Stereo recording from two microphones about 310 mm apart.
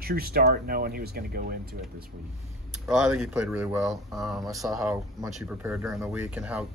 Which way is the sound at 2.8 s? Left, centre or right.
Centre.